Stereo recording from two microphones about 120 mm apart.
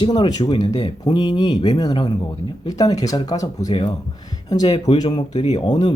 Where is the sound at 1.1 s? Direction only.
35° left (ahead or behind).